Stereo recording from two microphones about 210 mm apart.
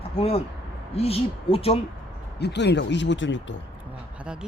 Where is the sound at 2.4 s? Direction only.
55° left (ahead or behind).